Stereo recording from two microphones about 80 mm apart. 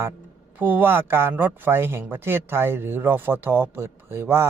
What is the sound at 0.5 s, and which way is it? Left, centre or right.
Speech, right.